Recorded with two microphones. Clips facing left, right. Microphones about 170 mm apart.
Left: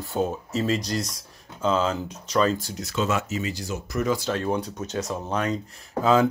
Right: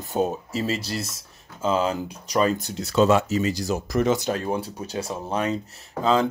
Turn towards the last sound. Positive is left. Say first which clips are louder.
# left 1 dB
turn(degrees=5)  # may be behind; listen again after turning